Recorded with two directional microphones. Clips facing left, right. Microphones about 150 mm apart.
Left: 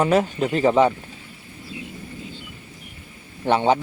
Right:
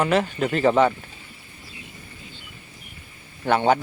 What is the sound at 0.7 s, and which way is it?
Speech, 20° left (ahead or behind).